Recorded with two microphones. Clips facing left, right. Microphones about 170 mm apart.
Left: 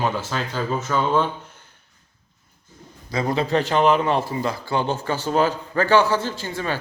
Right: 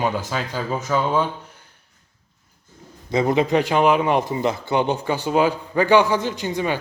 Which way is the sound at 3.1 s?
20° right (ahead or behind).